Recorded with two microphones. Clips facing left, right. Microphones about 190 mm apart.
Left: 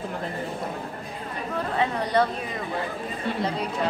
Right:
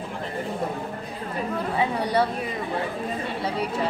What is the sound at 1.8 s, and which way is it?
Speech, 10° right (ahead or behind).